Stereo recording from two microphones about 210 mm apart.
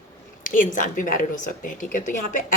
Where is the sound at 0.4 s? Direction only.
40° left (ahead or behind).